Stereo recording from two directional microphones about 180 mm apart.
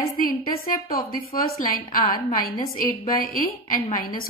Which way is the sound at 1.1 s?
50° left (ahead or behind).